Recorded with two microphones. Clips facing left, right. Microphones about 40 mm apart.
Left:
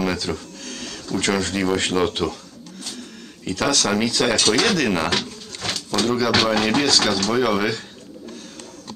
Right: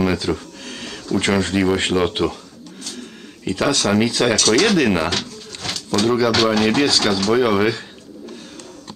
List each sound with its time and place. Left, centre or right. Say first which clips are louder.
0.0 s a sound: right 4 dB; centre
1.2 s speech: right 3 dB; centre
3.4 s speech: right 2 dB; centre
4.4 s speech: right 4 dB; centre
4.7 s speech: right 4 dB; centre
5.1 s pigeon: left 1 dB; centre
6.0 s speech: right 4 dB; centre
6.3 s speech: right 2 dB; centre